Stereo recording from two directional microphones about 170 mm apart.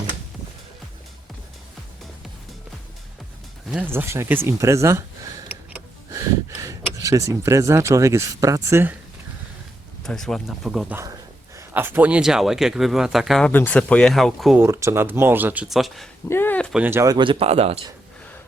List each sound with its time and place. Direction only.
3.7 s speech: 10° right (ahead or behind)
10.0 s speech: 5° left (ahead or behind)
13.5 s speech: 10° left (ahead or behind)
14.6 s speech: 15° right (ahead or behind); by 16.0 s centre (ahead or behind)
16.3 s speech: 10° left (ahead or behind)
16.7 s speech: 15° right (ahead or behind); by 17.7 s 40° right (ahead or behind)